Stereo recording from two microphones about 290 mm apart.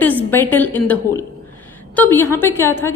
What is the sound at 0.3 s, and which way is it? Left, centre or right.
Speech, centre.